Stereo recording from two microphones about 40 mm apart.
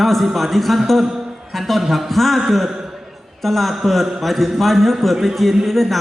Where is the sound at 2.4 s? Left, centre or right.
Centre.